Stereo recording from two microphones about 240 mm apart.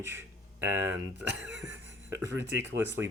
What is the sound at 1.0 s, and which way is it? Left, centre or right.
Speech, right.